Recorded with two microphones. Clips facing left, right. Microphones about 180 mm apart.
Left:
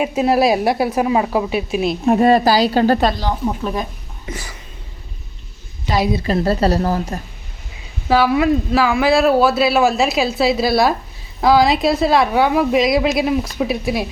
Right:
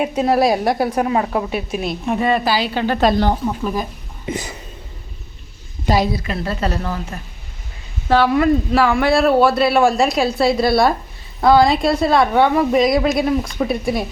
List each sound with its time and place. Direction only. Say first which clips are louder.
0.2 s a woman's voice: left 1 dB; 10° left (ahead or behind)
2.0 s speech: left 5 dB; 40° left (ahead or behind)
3.6 s speech: even; centre (ahead or behind)
4.3 s a sound: right 6 dB; 20° right (ahead or behind)
5.9 s a woman's voice: right 2 dB; 45° right (ahead or behind)
6.2 s speech: left 6 dB; 40° left (ahead or behind)
8.0 s speech: even; 5° left (ahead or behind)